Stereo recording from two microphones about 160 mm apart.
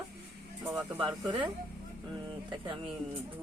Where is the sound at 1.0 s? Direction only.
30° right (ahead or behind).